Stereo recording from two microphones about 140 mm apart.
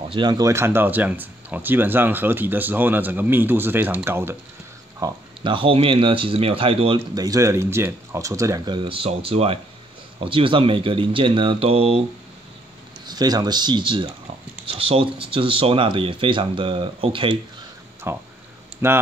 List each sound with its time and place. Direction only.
0.1 s speech: 30° right (ahead or behind)
5.0 s speech: 35° right (ahead or behind)
7.2 s speech: 25° right (ahead or behind); by 12.0 s 45° right (ahead or behind)
13.0 s speech: 30° right (ahead or behind)
18.1 s speech: 15° right (ahead or behind)